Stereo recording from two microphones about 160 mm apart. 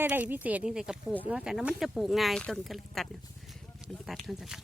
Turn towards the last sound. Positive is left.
turn(degrees=0)  # may be behind; listen again after turning